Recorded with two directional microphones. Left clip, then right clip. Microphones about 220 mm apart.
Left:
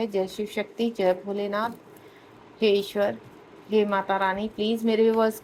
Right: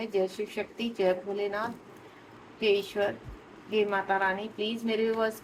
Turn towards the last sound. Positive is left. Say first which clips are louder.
# left 7 dB
turn(degrees=40)  # may be behind; listen again after turning